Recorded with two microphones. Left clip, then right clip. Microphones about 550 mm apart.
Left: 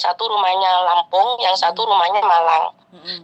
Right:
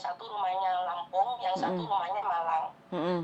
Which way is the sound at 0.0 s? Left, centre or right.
Left.